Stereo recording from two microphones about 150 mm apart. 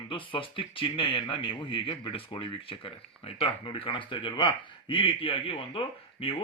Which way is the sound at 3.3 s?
35° left (ahead or behind).